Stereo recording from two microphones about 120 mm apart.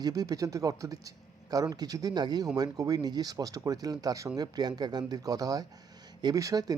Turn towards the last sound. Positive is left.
turn(degrees=-30)  # may be behind; listen again after turning